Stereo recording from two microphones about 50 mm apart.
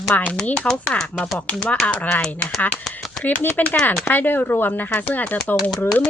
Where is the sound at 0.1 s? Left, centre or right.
Left.